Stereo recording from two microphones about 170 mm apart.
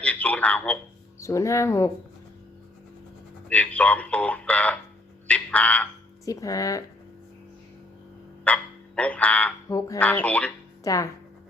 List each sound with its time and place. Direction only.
0.0 s telephone: 10° left (ahead or behind)
1.2 s speech: 20° left (ahead or behind)
3.5 s speech: 10° left (ahead or behind)
5.3 s frog: 10° left (ahead or behind)
6.2 s speech: 20° left (ahead or behind)
8.4 s speech: 10° left (ahead or behind)
10.0 s speech: 10° left (ahead or behind)
10.8 s speech: 20° left (ahead or behind)